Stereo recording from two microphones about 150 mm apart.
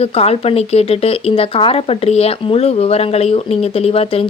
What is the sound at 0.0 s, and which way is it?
A woman's voice, 40° left (ahead or behind).